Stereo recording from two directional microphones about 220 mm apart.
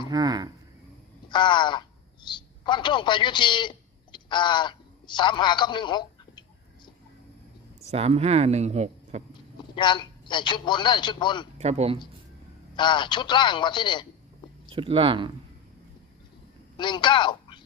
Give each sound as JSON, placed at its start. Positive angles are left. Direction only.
{"t": 0.1, "sound": "speech", "side_deg": -20}
{"t": 1.3, "sound": "speech", "side_deg": 20}
{"t": 7.9, "sound": "speech", "side_deg": -30}
{"t": 9.7, "sound": "a man's voice", "side_deg": 20}
{"t": 11.5, "sound": "speech", "side_deg": -30}
{"t": 12.7, "sound": "a man's voice", "side_deg": 20}
{"t": 14.7, "sound": "speech", "side_deg": -25}
{"t": 16.7, "sound": "speech", "side_deg": 20}